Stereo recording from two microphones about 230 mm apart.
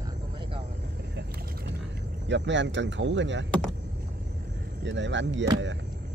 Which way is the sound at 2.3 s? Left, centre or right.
Right.